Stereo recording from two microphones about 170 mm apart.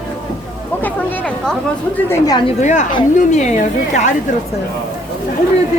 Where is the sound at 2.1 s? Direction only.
25° left (ahead or behind).